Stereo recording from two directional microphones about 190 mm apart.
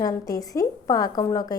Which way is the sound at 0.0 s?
20° left (ahead or behind).